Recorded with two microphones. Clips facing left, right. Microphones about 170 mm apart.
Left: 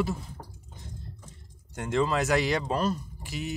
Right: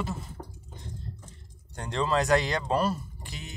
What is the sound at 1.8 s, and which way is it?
Speech, 5° left (ahead or behind).